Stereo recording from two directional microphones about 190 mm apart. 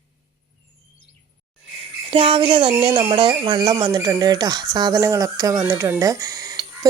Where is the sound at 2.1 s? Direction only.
30° right (ahead or behind).